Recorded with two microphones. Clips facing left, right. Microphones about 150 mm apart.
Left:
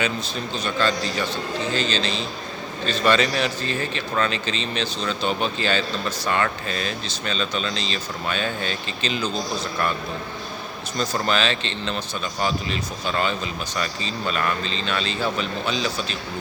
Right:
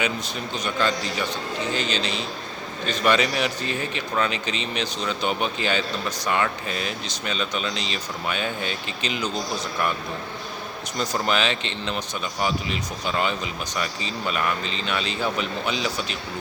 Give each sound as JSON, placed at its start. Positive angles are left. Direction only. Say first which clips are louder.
{"t": 0.0, "sound": "speech", "louder": "left 1 dB", "side_deg": -15}
{"t": 10.9, "sound": "speech", "louder": "left 1 dB", "side_deg": -15}